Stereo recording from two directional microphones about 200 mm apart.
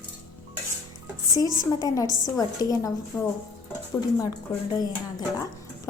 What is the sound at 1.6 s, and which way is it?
A woman's voice, 20° left (ahead or behind).